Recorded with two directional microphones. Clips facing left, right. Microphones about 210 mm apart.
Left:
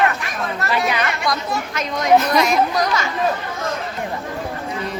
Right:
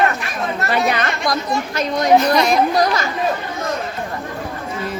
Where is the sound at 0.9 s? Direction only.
45° right (ahead or behind).